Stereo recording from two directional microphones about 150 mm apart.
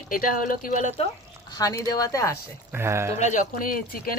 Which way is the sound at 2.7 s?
15° right (ahead or behind).